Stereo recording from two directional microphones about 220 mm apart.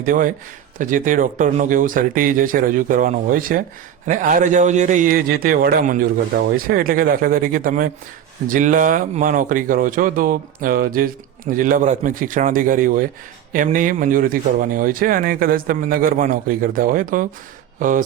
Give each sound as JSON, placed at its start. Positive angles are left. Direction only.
{"t": 0.0, "sound": "speech", "side_deg": -40}